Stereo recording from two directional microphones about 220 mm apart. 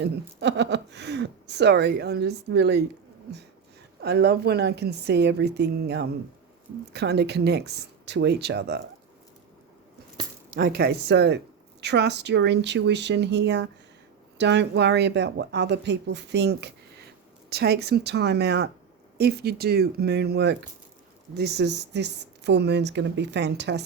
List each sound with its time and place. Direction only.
0.0 s speech: 50° right (ahead or behind)
4.0 s speech: 45° right (ahead or behind)
10.5 s speech: 40° right (ahead or behind)